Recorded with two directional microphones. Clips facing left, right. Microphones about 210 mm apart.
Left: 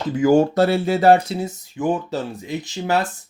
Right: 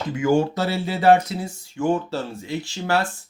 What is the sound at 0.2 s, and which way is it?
Speech, 40° left (ahead or behind).